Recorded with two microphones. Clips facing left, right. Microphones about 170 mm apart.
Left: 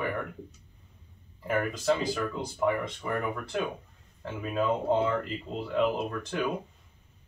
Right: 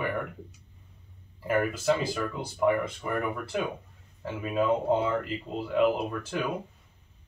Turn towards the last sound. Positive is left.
turn(degrees=-5)  # may be behind; listen again after turning